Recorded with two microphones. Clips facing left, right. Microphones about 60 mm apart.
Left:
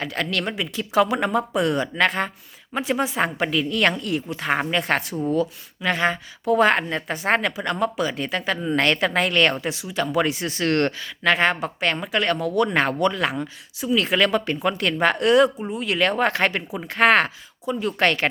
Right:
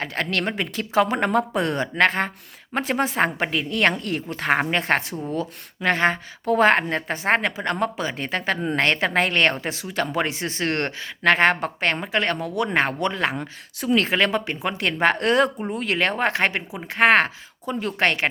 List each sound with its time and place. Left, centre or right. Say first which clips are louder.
0.0 s speech: even; right
10.1 s speech: left 3 dB; right
11.2 s a woman's voice: right 2 dB; right
11.9 s speech: left 1 dB; right
15.0 s speech: left 2 dB; right